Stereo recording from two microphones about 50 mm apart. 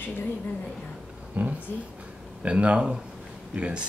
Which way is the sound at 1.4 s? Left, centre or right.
Right.